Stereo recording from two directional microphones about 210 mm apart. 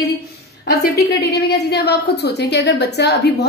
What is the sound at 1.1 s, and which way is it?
A woman's voice, 50° left (ahead or behind).